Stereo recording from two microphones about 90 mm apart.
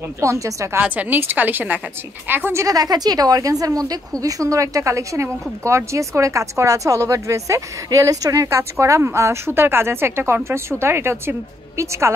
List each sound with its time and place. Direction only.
0.2 s a woman's voice: 35° right (ahead or behind)
0.7 s a woman's voice: 20° right (ahead or behind)
2.6 s a woman's voice: 45° right (ahead or behind)